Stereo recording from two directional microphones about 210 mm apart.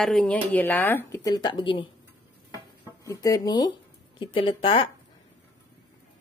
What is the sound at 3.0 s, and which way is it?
A woman's voice, 15° left (ahead or behind).